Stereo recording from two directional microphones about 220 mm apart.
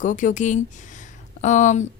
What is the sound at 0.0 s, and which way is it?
A woman's voice, 35° left (ahead or behind).